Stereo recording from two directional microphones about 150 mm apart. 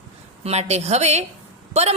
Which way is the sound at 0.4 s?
45° right (ahead or behind).